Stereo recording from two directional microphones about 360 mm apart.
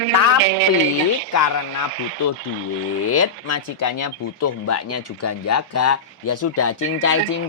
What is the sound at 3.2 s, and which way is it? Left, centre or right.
Speech, left.